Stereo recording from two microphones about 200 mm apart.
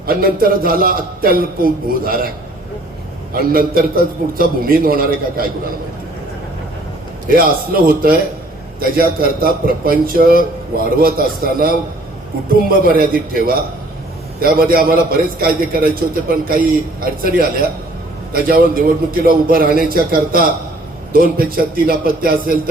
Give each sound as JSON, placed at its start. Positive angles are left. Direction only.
{"t": 0.0, "sound": "a man's voice", "side_deg": -50}
{"t": 3.3, "sound": "a man's voice", "side_deg": -45}
{"t": 7.3, "sound": "a man's voice", "side_deg": -45}